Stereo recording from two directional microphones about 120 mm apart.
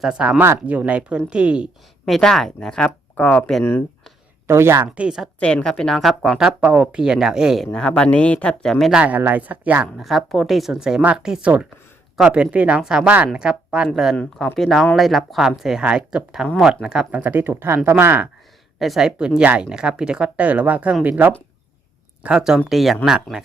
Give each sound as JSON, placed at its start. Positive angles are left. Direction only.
{"t": 0.0, "sound": "speech", "side_deg": -10}
{"t": 4.4, "sound": "speech", "side_deg": -20}
{"t": 4.9, "sound": "speech", "side_deg": -5}
{"t": 5.4, "sound": "speech", "side_deg": 10}
{"t": 8.7, "sound": "speech", "side_deg": -5}
{"t": 10.0, "sound": "speech", "side_deg": 0}
{"t": 18.8, "sound": "speech", "side_deg": 0}